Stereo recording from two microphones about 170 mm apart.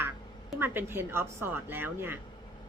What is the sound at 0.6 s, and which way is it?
A woman's voice, 10° right (ahead or behind).